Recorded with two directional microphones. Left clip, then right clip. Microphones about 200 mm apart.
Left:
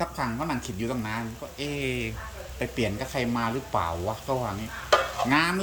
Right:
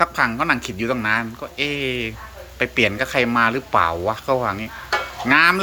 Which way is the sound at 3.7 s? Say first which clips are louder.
Right 10 dB; 45° right (ahead or behind).